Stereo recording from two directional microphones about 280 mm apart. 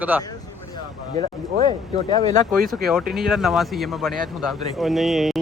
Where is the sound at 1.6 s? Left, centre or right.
Centre.